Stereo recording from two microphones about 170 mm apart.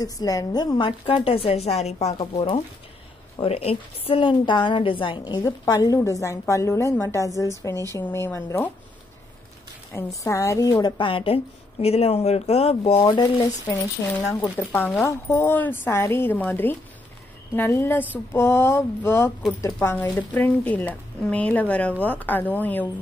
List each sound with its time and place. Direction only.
0.0 s a woman's voice: 20° left (ahead or behind)
9.9 s a woman's voice: 15° left (ahead or behind)
14.3 s a woman's voice: 15° left (ahead or behind)